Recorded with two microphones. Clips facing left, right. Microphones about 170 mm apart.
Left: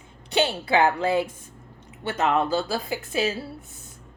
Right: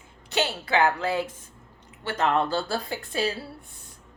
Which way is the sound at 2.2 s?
10° left (ahead or behind).